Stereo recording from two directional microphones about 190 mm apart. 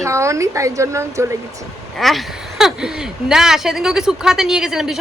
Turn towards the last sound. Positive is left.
turn(degrees=-5)  # may be behind; listen again after turning